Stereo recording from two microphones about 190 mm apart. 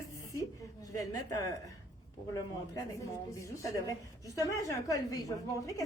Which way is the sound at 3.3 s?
15° left (ahead or behind).